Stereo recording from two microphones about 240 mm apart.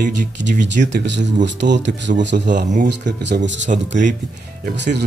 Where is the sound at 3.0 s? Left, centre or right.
Right.